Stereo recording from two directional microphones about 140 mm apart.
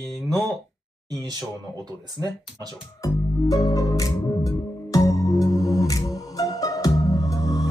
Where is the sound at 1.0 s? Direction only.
25° right (ahead or behind).